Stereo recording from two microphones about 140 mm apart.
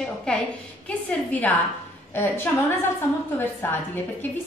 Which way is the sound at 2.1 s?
15° left (ahead or behind).